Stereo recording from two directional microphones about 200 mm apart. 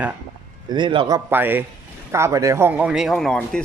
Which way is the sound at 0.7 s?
25° right (ahead or behind).